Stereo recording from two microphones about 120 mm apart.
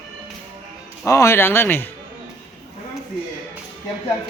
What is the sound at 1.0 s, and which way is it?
Speech, 25° left (ahead or behind).